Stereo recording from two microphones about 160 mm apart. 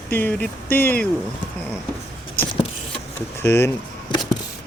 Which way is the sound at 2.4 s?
15° left (ahead or behind).